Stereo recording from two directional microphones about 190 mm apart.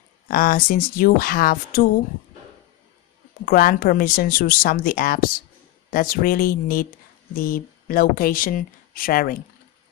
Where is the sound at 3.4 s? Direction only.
50° left (ahead or behind).